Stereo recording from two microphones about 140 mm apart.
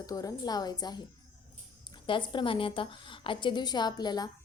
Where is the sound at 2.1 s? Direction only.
35° left (ahead or behind).